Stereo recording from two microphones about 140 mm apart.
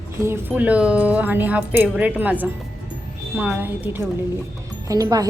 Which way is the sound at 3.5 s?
10° right (ahead or behind).